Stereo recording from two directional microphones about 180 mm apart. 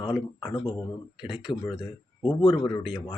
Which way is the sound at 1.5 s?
25° left (ahead or behind).